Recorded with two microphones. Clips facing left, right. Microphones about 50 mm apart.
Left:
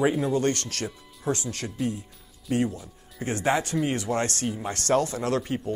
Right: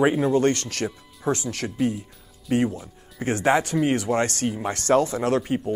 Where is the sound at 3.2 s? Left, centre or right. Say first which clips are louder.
Right 4 dB; right.